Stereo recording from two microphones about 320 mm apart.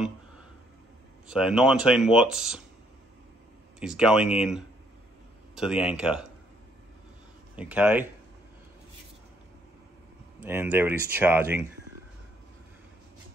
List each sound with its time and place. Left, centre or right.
1.2 s speech: centre
3.8 s speech: centre
7.5 s speech: centre
10.4 s speech: centre